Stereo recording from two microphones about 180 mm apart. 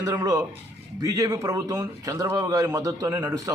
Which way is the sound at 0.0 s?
20° right (ahead or behind).